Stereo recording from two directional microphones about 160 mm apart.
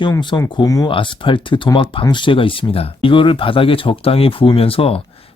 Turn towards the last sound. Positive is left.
turn(degrees=35)  # may be behind; listen again after turning